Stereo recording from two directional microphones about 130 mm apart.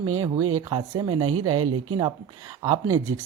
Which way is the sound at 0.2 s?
30° right (ahead or behind).